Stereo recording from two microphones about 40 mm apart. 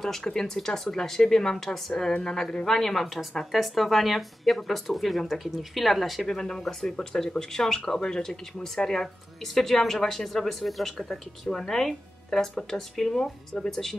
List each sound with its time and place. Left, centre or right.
0.0 s a woman's voice: centre
6.2 s speech: centre
11.0 s speech: centre